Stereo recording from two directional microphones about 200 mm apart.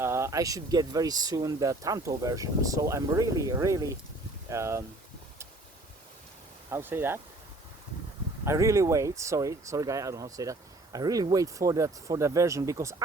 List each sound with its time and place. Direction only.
0.0 s speech: 15° right (ahead or behind)
6.7 s speech: 10° right (ahead or behind)
8.4 s speech: 15° right (ahead or behind)